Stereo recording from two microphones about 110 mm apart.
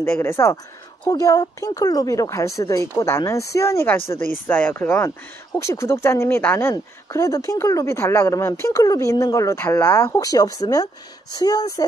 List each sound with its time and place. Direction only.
0.0 s speech: 20° left (ahead or behind)
1.1 s speech: 35° left (ahead or behind); by 4.9 s 15° left (ahead or behind)
5.6 s speech: 25° left (ahead or behind)
6.7 s speech: 30° left (ahead or behind)